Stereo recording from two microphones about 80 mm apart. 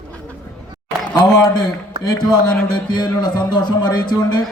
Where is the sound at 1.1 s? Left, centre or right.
Left.